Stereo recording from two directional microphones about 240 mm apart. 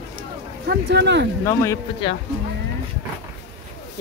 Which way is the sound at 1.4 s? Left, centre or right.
Centre.